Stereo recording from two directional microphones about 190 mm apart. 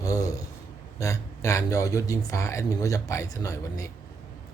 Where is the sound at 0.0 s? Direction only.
15° left (ahead or behind).